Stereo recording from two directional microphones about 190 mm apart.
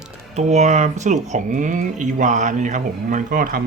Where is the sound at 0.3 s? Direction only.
35° right (ahead or behind).